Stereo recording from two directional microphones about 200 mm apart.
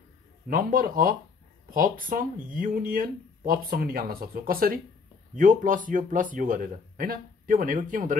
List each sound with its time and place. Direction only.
0.5 s speech: 45° right (ahead or behind)